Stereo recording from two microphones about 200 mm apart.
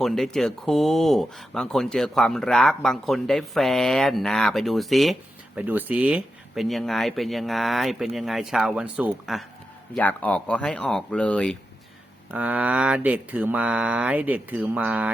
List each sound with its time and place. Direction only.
0.0 s speech: centre (ahead or behind)
12.3 s speech: 5° right (ahead or behind)